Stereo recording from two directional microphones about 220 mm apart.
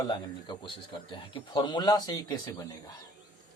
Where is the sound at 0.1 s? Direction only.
20° left (ahead or behind).